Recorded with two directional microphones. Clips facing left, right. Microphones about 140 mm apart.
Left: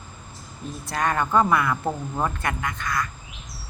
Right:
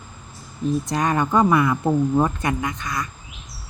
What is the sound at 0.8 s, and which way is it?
Speech, 20° right (ahead or behind).